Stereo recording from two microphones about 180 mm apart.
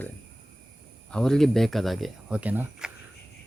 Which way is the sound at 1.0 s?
5° left (ahead or behind).